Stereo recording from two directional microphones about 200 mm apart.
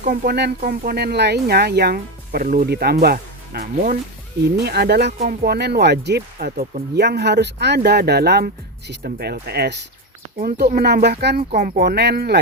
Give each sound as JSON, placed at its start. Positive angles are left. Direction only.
{"t": 0.0, "sound": "speech", "side_deg": -50}
{"t": 5.2, "sound": "speech", "side_deg": -45}
{"t": 11.5, "sound": "speech", "side_deg": -40}